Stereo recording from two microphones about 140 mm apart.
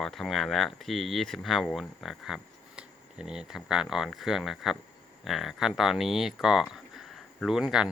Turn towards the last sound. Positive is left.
turn(degrees=-5)  # may be behind; listen again after turning